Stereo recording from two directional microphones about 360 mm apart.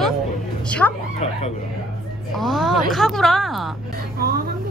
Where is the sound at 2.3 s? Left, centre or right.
Centre.